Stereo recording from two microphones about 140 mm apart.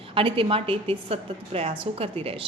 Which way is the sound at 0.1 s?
40° right (ahead or behind).